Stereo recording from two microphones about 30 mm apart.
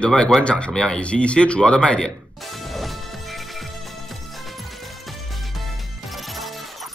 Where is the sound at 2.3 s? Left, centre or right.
Centre.